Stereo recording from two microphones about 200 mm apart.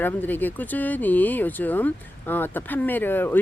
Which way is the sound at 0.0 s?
10° left (ahead or behind).